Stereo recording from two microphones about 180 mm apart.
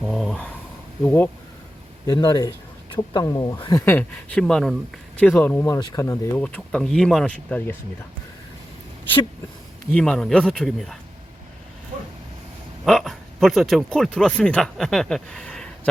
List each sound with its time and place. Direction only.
0.0 s a sound: centre (ahead or behind)
1.0 s speech: 10° left (ahead or behind)
2.0 s speech: 20° left (ahead or behind)
6.4 s speech: 5° left (ahead or behind)
9.9 s speech: 5° left (ahead or behind)
12.8 s speech: centre (ahead or behind)